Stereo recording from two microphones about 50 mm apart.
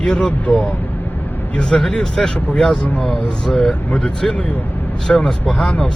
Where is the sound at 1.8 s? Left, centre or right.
Centre.